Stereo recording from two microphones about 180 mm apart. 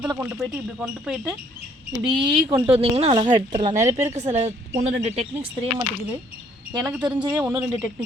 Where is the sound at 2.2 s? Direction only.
30° right (ahead or behind).